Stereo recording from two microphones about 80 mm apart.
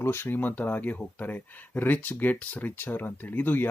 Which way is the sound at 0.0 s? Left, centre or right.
Left.